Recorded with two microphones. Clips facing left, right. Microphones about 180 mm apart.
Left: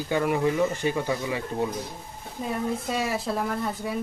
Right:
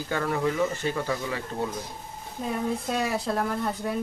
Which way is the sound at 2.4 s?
Centre (ahead or behind).